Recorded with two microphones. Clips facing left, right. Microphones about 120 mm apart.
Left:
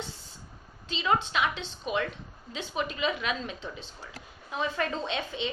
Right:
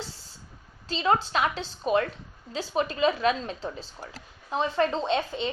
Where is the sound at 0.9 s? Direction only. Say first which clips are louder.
Right 3 dB; 35° right (ahead or behind).